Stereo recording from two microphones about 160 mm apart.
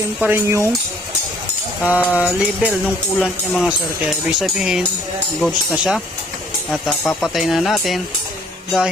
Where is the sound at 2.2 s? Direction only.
5° right (ahead or behind).